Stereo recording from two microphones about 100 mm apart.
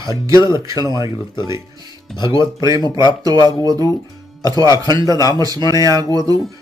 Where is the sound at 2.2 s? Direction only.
50° left (ahead or behind).